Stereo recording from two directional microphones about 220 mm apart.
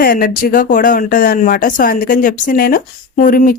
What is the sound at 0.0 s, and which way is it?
Speech, 40° left (ahead or behind).